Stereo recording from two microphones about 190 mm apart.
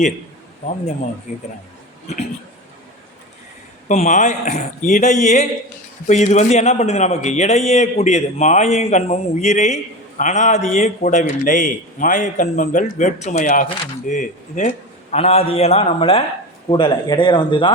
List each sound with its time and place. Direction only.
1.3 s a man's voice: 40° left (ahead or behind)
3.8 s a man's voice: 40° left (ahead or behind)